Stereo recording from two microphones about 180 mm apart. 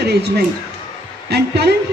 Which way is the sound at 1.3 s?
65° right (ahead or behind).